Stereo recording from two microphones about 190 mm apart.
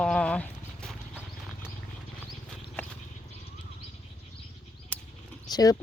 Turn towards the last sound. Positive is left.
turn(degrees=20)  # may be behind; listen again after turning